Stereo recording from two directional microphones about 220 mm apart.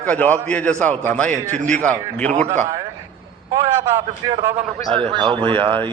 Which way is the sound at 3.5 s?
15° right (ahead or behind).